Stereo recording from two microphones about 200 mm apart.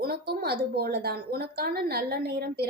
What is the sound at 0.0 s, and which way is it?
A woman's voice, 50° right (ahead or behind).